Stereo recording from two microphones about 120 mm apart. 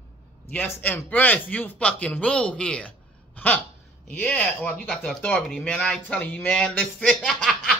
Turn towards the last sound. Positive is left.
turn(degrees=0)  # may be behind; listen again after turning